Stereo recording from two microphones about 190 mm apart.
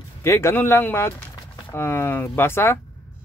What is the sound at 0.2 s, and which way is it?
Speech, 15° left (ahead or behind).